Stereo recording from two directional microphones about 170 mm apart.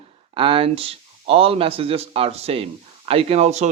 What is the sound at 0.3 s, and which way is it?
A man's voice, 30° right (ahead or behind).